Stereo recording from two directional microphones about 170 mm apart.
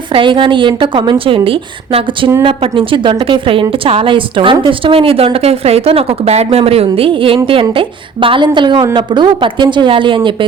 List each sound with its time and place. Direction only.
0.1 s a woman's voice: 30° right (ahead or behind)